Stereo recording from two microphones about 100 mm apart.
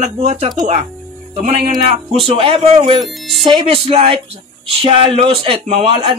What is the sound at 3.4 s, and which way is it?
A man's voice, 70° right (ahead or behind).